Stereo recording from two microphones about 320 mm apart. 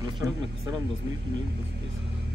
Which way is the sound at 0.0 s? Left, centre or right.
Centre.